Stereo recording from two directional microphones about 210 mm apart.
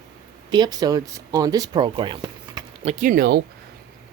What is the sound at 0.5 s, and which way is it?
Speech, 20° right (ahead or behind).